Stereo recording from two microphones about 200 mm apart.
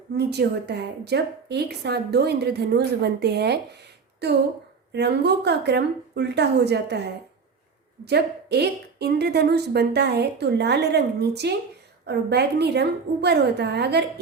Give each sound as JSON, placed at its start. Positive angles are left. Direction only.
{"t": 0.1, "sound": "a woman's voice", "side_deg": -55}